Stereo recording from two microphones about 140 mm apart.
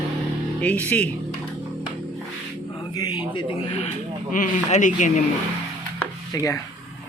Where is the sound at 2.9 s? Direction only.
30° left (ahead or behind).